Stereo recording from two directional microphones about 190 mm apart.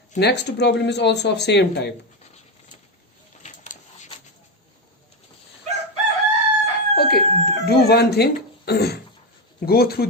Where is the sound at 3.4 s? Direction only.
40° left (ahead or behind).